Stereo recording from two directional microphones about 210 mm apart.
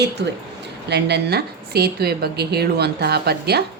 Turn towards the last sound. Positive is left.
turn(degrees=-50)  # may be behind; listen again after turning